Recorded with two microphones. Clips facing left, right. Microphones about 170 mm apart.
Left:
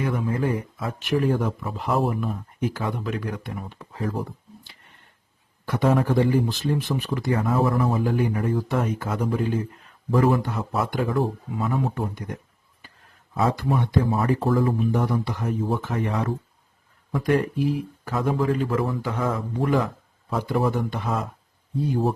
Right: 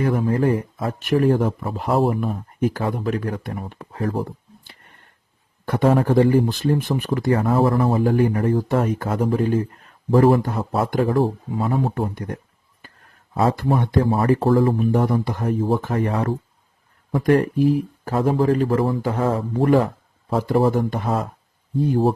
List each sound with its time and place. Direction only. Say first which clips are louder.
0.0 s speech: right 5 dB; 40° right (ahead or behind); by 4.2 s 60° right (ahead or behind)
5.6 s speech: right 4 dB; 50° right (ahead or behind)
7.4 s speech: right 2 dB; 35° right (ahead or behind)
10.6 s speech: right 5 dB; 35° right (ahead or behind)
11.9 s speech: right 4 dB; 55° right (ahead or behind)
14.3 s speech: right 5 dB; 35° right (ahead or behind)
14.9 s speech: right 4 dB; 45° right (ahead or behind)